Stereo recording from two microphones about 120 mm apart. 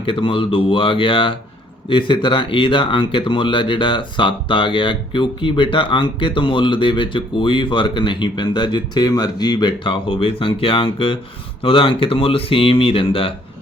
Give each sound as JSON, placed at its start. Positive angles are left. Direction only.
{"t": 0.0, "sound": "speech", "side_deg": 45}